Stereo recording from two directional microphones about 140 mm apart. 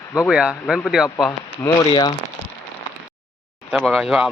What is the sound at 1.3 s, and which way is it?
Speech, 25° left (ahead or behind).